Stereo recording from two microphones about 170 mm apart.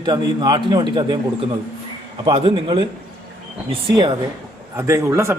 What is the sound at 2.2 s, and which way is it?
A man's voice, 30° right (ahead or behind).